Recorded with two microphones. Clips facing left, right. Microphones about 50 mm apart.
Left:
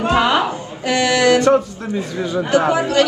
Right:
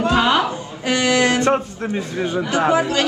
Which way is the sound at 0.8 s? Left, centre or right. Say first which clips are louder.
Left 2 dB; right.